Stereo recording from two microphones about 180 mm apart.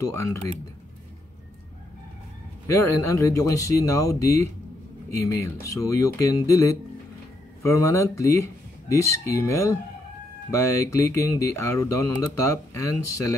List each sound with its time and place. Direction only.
0.1 s speech: 15° left (ahead or behind)
2.7 s speech: 15° left (ahead or behind)
7.6 s speech: 15° left (ahead or behind)